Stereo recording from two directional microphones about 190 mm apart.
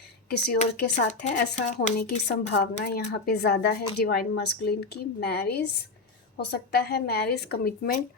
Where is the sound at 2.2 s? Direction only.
60° left (ahead or behind).